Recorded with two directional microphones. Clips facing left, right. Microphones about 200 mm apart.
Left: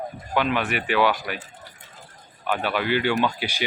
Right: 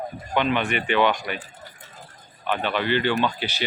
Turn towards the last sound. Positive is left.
turn(degrees=10)  # may be behind; listen again after turning